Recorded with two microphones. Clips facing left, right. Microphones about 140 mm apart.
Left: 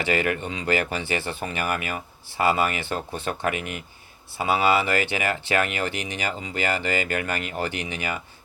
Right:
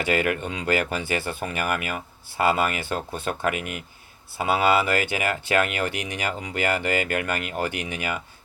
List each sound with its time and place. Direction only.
0.0 s speech: 55° right (ahead or behind)